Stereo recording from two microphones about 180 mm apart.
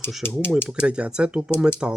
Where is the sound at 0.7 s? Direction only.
5° right (ahead or behind).